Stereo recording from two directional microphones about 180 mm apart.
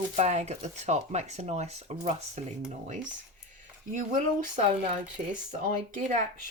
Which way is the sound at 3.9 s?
45° right (ahead or behind).